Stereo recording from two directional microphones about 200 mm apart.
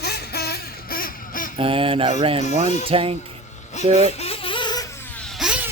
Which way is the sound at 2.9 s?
25° right (ahead or behind).